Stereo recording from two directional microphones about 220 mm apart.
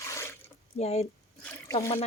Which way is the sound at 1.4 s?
15° left (ahead or behind).